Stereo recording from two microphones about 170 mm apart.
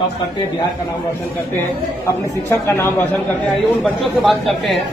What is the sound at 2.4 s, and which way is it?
Speech, 15° left (ahead or behind).